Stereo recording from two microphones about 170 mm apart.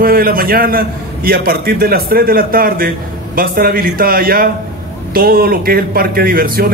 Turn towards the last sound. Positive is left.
turn(degrees=-60)  # may be behind; listen again after turning